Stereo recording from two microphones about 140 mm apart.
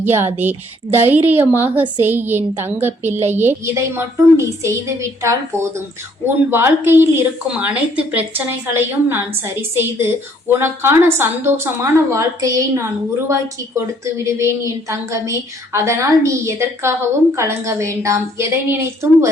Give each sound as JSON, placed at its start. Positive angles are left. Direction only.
{"t": 0.0, "sound": "a woman's voice", "side_deg": -15}